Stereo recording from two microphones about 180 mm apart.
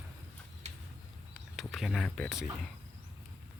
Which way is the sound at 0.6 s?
35° right (ahead or behind).